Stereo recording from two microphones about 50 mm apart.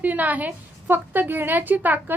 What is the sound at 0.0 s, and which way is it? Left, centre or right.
A woman's voice, right.